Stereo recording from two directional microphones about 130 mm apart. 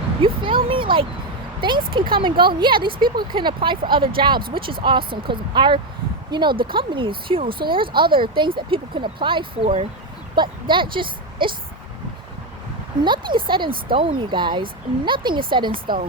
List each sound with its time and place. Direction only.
0.2 s a sound: 40° right (ahead or behind)
1.9 s speech: 40° right (ahead or behind)
13.0 s speech: 40° right (ahead or behind)